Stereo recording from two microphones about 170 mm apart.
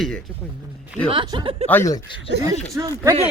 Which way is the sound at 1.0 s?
30° right (ahead or behind).